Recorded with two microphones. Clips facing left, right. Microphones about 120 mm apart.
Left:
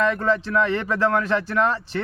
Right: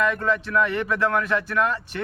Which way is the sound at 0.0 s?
30° left (ahead or behind).